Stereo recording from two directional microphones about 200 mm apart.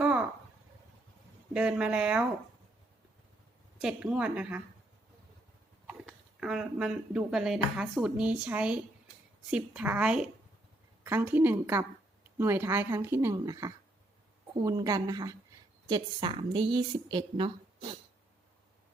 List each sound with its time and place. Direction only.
0.0 s a sound: 5° right (ahead or behind)
1.5 s speech: 5° right (ahead or behind)
3.8 s speech: 5° right (ahead or behind)
5.9 s a woman's voice: 5° right (ahead or behind); by 17.9 s 25° right (ahead or behind)